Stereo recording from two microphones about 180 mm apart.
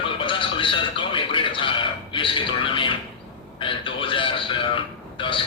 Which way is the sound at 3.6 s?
30° left (ahead or behind).